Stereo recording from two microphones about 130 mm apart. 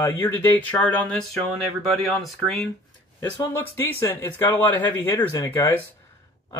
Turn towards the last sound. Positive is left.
turn(degrees=20)  # may be behind; listen again after turning